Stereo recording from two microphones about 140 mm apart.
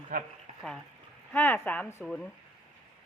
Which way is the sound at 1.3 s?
10° left (ahead or behind).